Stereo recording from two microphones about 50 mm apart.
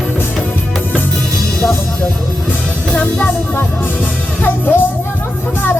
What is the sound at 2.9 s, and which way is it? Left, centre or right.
Music, left.